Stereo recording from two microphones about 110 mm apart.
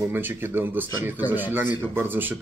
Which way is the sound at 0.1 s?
20° right (ahead or behind).